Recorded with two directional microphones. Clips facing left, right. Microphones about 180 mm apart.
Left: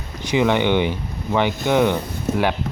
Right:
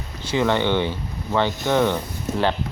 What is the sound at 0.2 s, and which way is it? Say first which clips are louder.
Speech: left 2 dB; 15° left (ahead or behind).